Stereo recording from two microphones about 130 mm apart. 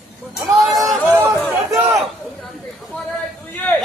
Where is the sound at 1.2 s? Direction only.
20° right (ahead or behind).